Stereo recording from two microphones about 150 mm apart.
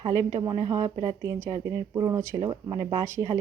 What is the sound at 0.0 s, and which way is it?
Speech, 20° right (ahead or behind).